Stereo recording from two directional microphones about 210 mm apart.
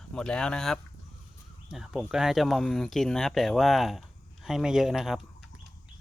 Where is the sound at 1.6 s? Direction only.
5° right (ahead or behind).